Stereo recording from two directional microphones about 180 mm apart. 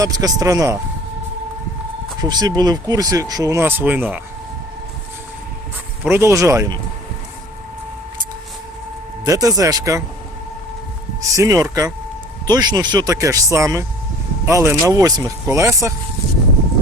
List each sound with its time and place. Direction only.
0.0 s speech: 20° right (ahead or behind)
2.2 s speech: 20° right (ahead or behind)
6.1 s speech: 15° right (ahead or behind)
9.2 s speech: 20° right (ahead or behind)
11.2 s speech: 20° right (ahead or behind)